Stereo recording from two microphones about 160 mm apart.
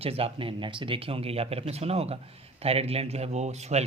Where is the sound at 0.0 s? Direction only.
35° right (ahead or behind).